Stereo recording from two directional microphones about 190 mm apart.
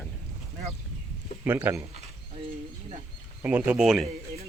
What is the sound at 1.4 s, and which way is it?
Speech, 10° right (ahead or behind).